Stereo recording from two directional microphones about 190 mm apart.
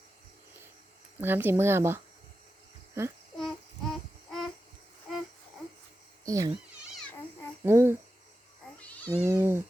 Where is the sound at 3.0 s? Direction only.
15° right (ahead or behind).